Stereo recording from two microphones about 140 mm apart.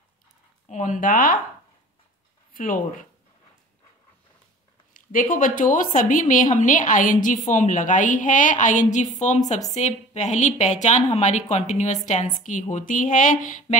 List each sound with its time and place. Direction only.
0.7 s a woman's voice: 65° left (ahead or behind); by 1.4 s 85° left
2.5 s a woman's voice: 75° left (ahead or behind)
4.9 s a woman's voice: 75° left (ahead or behind); by 12.0 s 55° left (ahead or behind)
12.7 s a woman's voice: 65° left (ahead or behind)